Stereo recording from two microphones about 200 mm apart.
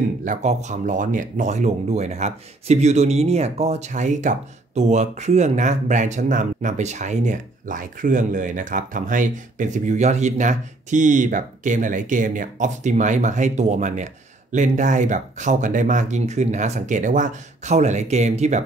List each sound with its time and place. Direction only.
0.2 s speech: 40° right (ahead or behind)